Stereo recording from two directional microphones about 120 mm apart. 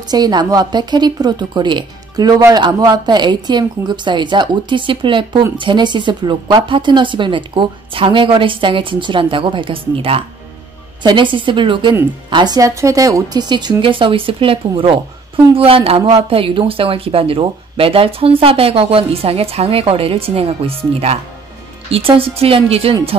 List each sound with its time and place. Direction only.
0.1 s a woman's voice: 35° right (ahead or behind); by 22.9 s 50° right (ahead or behind)